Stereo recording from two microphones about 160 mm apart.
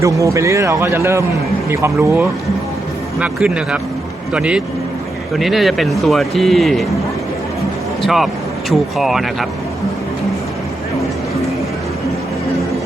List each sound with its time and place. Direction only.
0.0 s speech: 20° right (ahead or behind)
3.2 s a man's voice: 5° right (ahead or behind)
8.0 s a man's voice: centre (ahead or behind)